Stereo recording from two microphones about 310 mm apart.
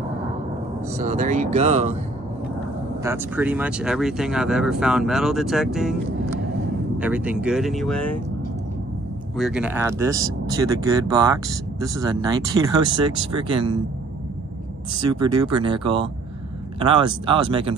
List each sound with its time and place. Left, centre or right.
0.9 s speech: right
3.0 s speech: centre
7.0 s speech: centre
9.4 s speech: centre
15.0 s speech: centre